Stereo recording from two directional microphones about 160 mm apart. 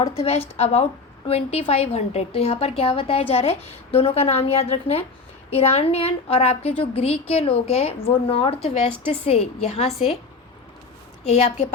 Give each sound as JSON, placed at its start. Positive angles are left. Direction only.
{"t": 0.0, "sound": "a woman's voice", "side_deg": 40}
{"t": 11.3, "sound": "a woman's voice", "side_deg": 40}